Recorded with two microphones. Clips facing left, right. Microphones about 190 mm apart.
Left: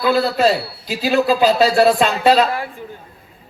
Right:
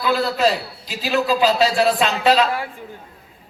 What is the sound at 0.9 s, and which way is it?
A man's voice, 50° left (ahead or behind).